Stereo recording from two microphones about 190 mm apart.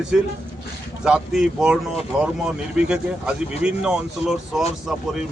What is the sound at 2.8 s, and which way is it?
Speech, 5° right (ahead or behind).